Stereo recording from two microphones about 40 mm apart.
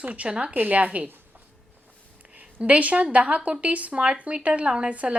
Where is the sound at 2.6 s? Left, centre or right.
Right.